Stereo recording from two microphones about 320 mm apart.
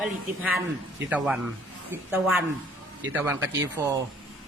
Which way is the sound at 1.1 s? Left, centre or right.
Centre.